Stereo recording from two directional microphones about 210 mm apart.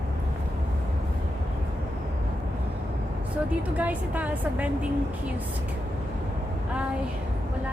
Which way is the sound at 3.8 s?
5° right (ahead or behind).